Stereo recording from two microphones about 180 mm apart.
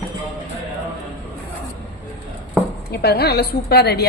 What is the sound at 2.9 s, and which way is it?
A woman's voice, 60° left (ahead or behind).